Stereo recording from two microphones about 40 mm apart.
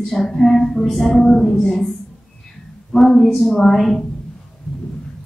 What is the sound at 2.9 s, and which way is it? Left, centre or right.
Speech, centre.